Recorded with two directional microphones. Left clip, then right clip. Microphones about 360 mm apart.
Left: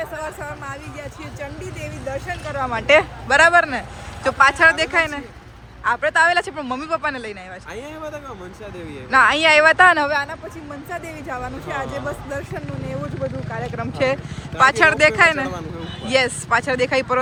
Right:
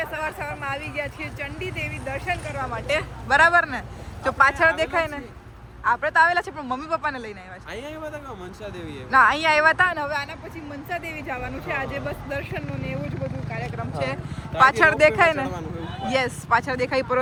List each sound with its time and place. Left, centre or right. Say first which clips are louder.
0.0 s speech: even; centre
2.6 s speech: left 14 dB; left
3.2 s speech: left 1 dB; centre
9.0 s speech: left 3 dB; centre
9.9 s speech: left 8 dB; left
10.8 s speech: even; centre
14.5 s speech: left 2 dB; centre